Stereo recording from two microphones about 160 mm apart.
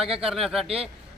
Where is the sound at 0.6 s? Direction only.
40° right (ahead or behind).